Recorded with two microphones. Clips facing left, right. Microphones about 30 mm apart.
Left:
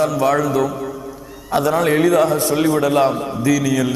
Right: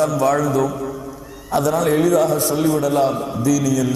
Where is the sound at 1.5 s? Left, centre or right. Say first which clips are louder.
Left 1 dB; left.